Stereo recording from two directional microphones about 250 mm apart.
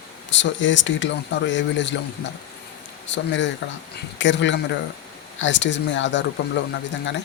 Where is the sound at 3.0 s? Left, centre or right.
Left.